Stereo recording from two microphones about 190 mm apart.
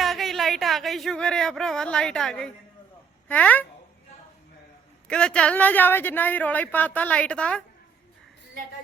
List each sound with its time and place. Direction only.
0.0 s a woman's voice: centre (ahead or behind)
5.0 s a woman's voice: 5° left (ahead or behind)